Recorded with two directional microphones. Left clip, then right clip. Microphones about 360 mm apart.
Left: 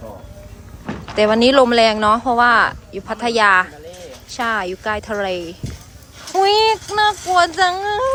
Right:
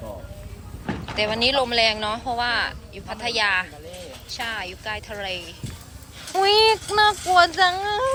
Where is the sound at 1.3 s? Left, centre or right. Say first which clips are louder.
Left 9 dB; left.